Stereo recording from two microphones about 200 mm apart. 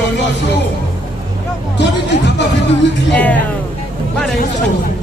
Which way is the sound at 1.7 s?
60° left (ahead or behind).